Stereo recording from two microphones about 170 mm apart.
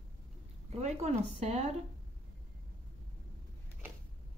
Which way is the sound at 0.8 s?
40° right (ahead or behind).